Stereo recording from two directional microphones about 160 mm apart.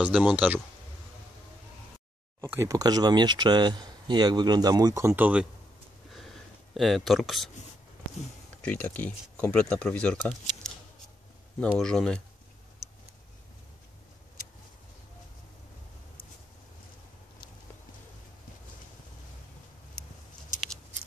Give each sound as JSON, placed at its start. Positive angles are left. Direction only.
{"t": 0.0, "sound": "speech", "side_deg": -10}
{"t": 2.4, "sound": "speech", "side_deg": -15}
{"t": 6.7, "sound": "speech", "side_deg": 0}
{"t": 8.6, "sound": "speech", "side_deg": 10}
{"t": 11.8, "sound": "speech", "side_deg": 5}